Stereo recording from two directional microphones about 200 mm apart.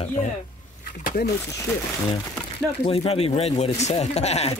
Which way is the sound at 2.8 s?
30° left (ahead or behind).